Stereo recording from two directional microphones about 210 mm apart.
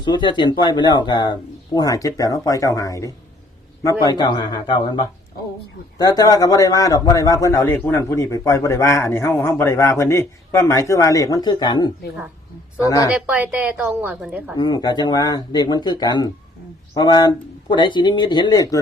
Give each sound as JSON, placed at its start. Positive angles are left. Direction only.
{"t": 0.0, "sound": "a man's voice", "side_deg": 20}
{"t": 13.1, "sound": "a woman's voice", "side_deg": -5}
{"t": 14.6, "sound": "speech", "side_deg": 20}